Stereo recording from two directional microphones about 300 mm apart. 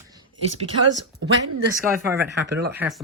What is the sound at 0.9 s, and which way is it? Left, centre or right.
Speech, right.